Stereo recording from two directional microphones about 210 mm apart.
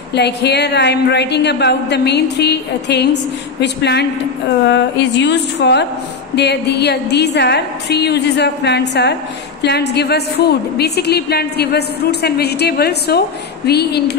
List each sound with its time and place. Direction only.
0.1 s a woman's voice: 55° left (ahead or behind)
4.6 s a sound: 55° left (ahead or behind)
6.3 s a woman's voice: 55° left (ahead or behind)